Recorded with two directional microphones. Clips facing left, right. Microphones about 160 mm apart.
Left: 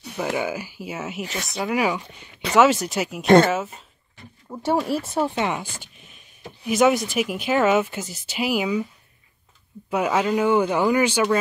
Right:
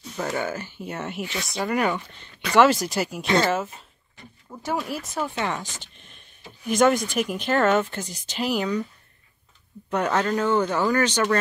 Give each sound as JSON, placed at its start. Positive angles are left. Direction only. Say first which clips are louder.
{"t": 0.2, "sound": "speech", "louder": "left 2 dB", "side_deg": 10}
{"t": 4.5, "sound": "speech", "louder": "left 6 dB", "side_deg": 30}
{"t": 5.4, "sound": "speech", "louder": "left 3 dB", "side_deg": 10}
{"t": 9.8, "sound": "speech", "louder": "left 2 dB", "side_deg": 5}